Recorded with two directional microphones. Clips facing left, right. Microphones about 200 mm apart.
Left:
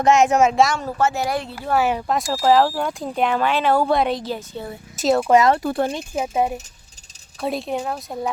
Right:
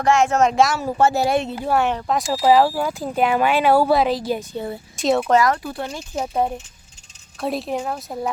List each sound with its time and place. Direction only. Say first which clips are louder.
0.0 s speech: left 2 dB; 20° left (ahead or behind)
0.4 s speech: even; centre (ahead or behind)
0.9 s speech: right 5 dB; 30° right (ahead or behind)
1.7 s speech: left 1 dB; 5° left (ahead or behind)
4.3 s a woman's voice: right 4 dB; 15° right (ahead or behind)
4.9 s speech: left 1 dB; centre (ahead or behind)
5.3 s speech: left 3 dB; 20° left (ahead or behind)
5.6 s speech: left 7 dB; 55° left (ahead or behind)
6.1 s speech: even; 10° left (ahead or behind)